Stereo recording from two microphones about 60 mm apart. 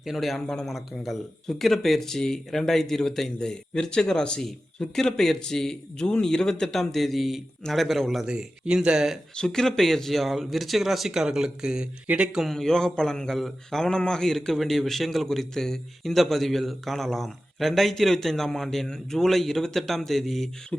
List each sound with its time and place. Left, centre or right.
0.0 s a man's voice: centre
0.7 s a man's voice: centre
8.3 s speech: centre
9.3 s a man's voice: centre; by 12.3 s right
12.5 s a man's voice: centre